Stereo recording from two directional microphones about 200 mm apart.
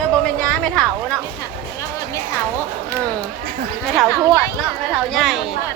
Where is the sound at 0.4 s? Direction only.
5° left (ahead or behind).